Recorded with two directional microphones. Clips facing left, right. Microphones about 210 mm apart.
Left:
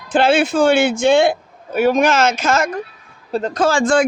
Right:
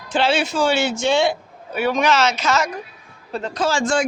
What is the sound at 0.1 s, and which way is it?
Speech, 50° left (ahead or behind).